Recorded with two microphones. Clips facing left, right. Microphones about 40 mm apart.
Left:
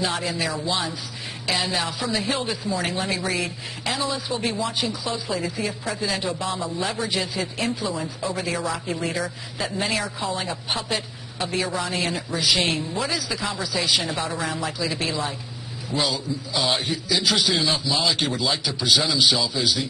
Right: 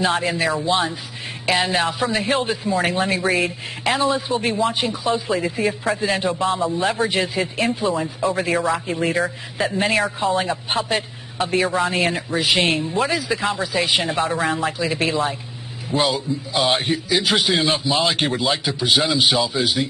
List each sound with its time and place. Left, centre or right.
0.0 s a man's voice: right